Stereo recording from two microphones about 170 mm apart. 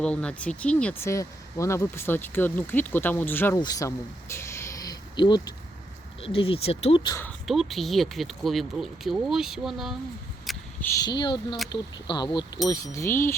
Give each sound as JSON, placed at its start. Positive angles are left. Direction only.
{"t": 0.0, "sound": "speech", "side_deg": 5}
{"t": 7.4, "sound": "speech", "side_deg": 0}
{"t": 10.4, "sound": "a sound", "side_deg": 0}
{"t": 10.8, "sound": "speech", "side_deg": 25}